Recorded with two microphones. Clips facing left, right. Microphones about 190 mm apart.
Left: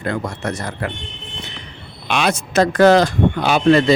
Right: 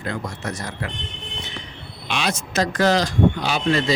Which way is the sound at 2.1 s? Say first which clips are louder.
Left 6 dB; 55° left (ahead or behind).